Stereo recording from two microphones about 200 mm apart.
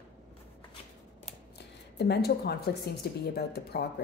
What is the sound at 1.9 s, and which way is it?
Speech, 55° left (ahead or behind).